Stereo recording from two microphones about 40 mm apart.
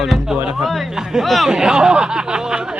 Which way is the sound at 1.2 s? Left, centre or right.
Centre.